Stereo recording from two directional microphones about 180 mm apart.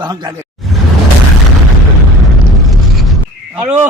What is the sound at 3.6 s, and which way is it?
Speech, 10° right (ahead or behind).